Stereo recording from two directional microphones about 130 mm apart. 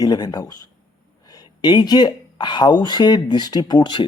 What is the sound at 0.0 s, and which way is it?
Speech, 30° left (ahead or behind).